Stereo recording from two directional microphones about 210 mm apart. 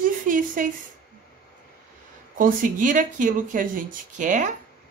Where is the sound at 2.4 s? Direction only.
40° right (ahead or behind).